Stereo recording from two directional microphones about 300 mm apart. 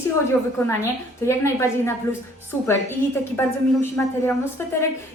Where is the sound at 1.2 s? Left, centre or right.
Centre.